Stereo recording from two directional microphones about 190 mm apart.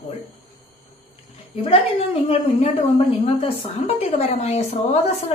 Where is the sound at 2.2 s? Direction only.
35° left (ahead or behind).